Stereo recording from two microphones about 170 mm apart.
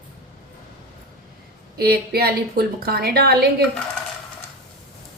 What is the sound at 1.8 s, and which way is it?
A woman's voice, 65° right (ahead or behind).